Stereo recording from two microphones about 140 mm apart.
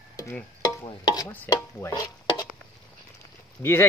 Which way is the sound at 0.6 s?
30° left (ahead or behind).